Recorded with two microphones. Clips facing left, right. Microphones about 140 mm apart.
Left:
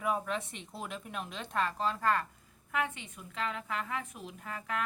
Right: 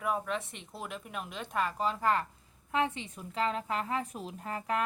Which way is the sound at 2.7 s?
30° right (ahead or behind).